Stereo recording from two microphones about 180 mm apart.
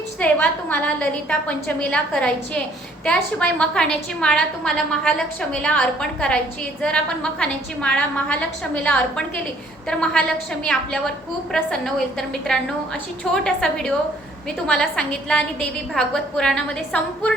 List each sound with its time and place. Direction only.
0.2 s a woman's voice: 10° left (ahead or behind)